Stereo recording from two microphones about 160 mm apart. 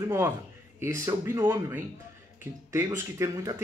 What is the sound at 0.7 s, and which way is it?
Speech, 20° right (ahead or behind).